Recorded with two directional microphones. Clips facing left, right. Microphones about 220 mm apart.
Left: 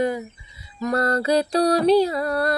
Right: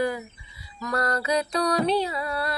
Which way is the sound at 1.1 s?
30° left (ahead or behind).